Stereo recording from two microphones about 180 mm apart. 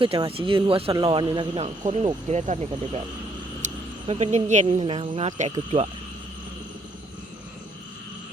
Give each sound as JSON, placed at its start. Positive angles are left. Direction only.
{"t": 0.0, "sound": "a man's voice", "side_deg": -30}
{"t": 3.6, "sound": "vehicle", "side_deg": -40}
{"t": 4.0, "sound": "speech", "side_deg": -35}